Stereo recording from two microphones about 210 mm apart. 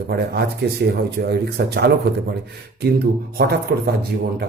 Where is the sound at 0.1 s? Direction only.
50° right (ahead or behind).